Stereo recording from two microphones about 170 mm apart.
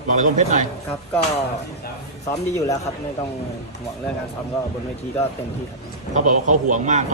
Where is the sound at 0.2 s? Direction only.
45° right (ahead or behind).